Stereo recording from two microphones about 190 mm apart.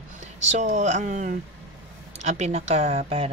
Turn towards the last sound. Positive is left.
turn(degrees=-35)  # may be behind; listen again after turning